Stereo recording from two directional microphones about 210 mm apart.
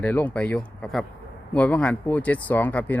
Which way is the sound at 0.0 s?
5° left (ahead or behind).